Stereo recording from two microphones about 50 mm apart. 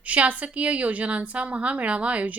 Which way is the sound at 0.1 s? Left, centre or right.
Right.